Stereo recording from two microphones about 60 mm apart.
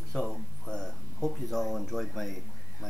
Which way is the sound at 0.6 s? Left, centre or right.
Centre.